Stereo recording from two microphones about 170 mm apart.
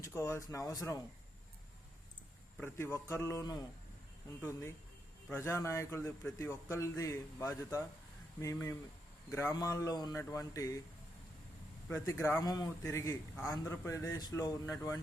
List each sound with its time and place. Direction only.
0.0 s speech: 15° left (ahead or behind)
2.6 s a man's voice: 15° left (ahead or behind)
11.9 s a man's voice: 15° left (ahead or behind)